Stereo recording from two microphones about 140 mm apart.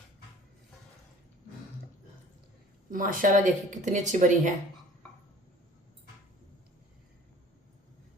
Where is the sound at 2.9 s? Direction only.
75° right (ahead or behind); by 4.5 s 60° right (ahead or behind).